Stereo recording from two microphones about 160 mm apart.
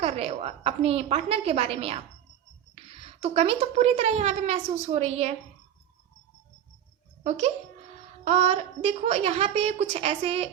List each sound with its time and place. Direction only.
0.0 s a woman's voice: 40° right (ahead or behind)
7.3 s a woman's voice: 40° right (ahead or behind)